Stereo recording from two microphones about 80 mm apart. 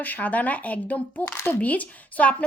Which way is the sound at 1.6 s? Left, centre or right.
Centre.